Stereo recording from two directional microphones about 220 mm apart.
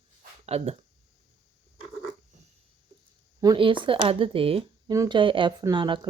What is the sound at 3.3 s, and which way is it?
Speech, 20° right (ahead or behind).